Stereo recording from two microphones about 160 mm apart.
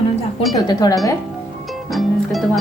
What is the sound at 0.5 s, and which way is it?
Speech, 25° left (ahead or behind).